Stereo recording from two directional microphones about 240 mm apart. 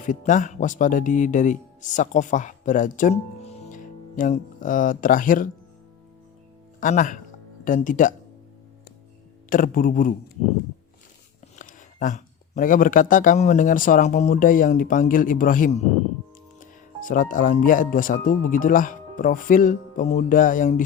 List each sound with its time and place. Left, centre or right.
0.0 s speech: left
6.7 s speech: left
9.5 s speech: left
11.5 s speech: left
17.0 s speech: left